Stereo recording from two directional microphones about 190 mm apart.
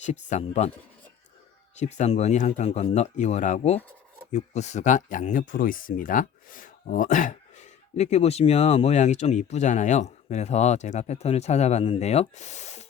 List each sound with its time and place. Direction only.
0.0 s speech: 35° left (ahead or behind)
1.7 s speech: 35° left (ahead or behind)